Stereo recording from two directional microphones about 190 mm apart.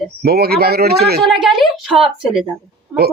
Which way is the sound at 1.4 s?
Centre (ahead or behind).